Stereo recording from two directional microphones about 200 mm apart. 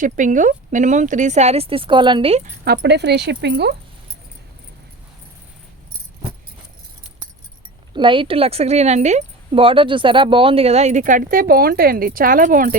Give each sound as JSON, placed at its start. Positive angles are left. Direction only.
{"t": 0.0, "sound": "speech", "side_deg": -40}
{"t": 2.6, "sound": "speech", "side_deg": -55}
{"t": 7.9, "sound": "speech", "side_deg": -25}